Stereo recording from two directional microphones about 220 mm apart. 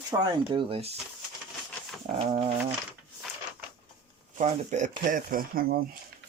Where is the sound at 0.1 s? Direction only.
20° right (ahead or behind).